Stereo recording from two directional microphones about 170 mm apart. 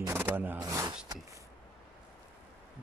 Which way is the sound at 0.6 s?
20° right (ahead or behind).